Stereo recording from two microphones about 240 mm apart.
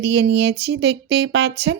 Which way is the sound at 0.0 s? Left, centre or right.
Right.